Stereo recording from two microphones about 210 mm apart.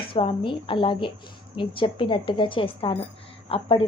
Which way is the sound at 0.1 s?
25° left (ahead or behind).